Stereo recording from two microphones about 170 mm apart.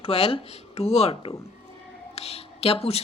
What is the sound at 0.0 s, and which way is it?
Speech, 35° left (ahead or behind).